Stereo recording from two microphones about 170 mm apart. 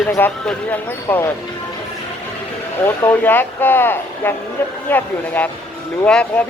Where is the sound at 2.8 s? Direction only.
10° left (ahead or behind).